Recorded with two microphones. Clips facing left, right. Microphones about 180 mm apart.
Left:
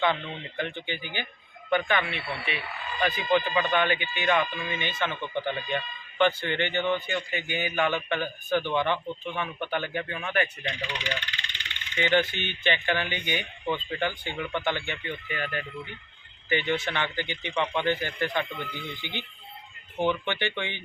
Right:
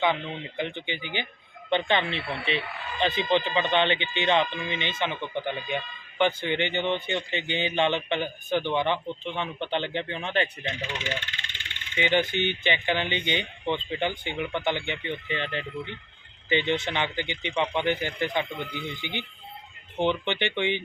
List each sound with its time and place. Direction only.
0.0 s speech: 15° right (ahead or behind)
11.2 s vehicle: 50° right (ahead or behind)
11.9 s speech: 15° right (ahead or behind)